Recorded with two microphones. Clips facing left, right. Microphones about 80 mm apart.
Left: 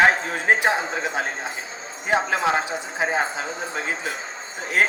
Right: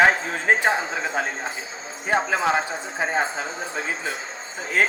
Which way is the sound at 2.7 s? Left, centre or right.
Centre.